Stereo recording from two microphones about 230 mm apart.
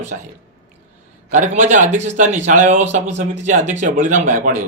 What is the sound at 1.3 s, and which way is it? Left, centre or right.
Speech, right.